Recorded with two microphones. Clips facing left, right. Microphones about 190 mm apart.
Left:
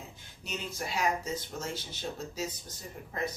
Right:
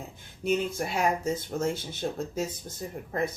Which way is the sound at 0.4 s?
55° right (ahead or behind).